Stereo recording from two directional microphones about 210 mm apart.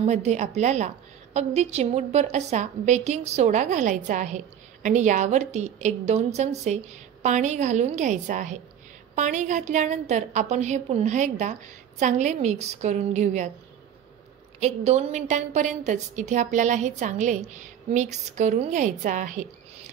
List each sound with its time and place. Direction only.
0.0 s a woman's voice: 30° right (ahead or behind)
14.6 s a woman's voice: 30° right (ahead or behind)